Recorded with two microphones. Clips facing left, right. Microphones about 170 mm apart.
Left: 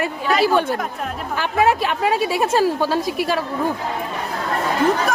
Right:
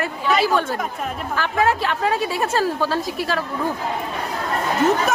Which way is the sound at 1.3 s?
15° left (ahead or behind).